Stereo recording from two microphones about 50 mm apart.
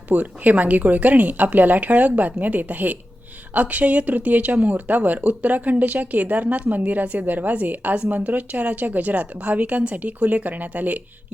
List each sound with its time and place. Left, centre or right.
0.1 s a woman's voice: right